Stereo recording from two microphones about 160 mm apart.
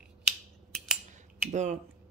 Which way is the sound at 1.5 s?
45° right (ahead or behind).